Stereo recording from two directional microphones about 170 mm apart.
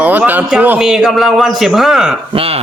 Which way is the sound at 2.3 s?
35° right (ahead or behind).